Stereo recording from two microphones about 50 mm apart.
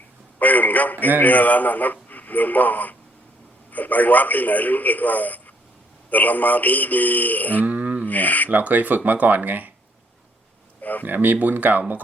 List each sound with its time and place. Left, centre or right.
0.3 s a man's voice: left
7.6 s a sound: right
8.0 s speech: left
8.4 s speech: right
10.8 s a sound: left
11.0 s speech: right